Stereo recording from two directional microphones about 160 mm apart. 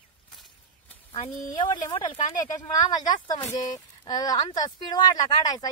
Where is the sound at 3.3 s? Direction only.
25° left (ahead or behind).